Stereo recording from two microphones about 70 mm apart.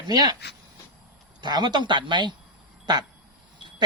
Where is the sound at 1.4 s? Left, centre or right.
Right.